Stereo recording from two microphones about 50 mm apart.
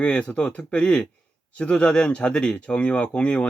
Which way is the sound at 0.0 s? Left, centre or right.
Left.